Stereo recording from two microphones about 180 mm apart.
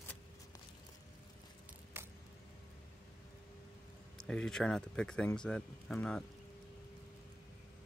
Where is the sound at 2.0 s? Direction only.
10° right (ahead or behind).